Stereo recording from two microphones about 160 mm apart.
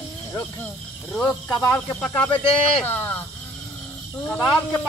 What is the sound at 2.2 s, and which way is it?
Speech, 35° left (ahead or behind).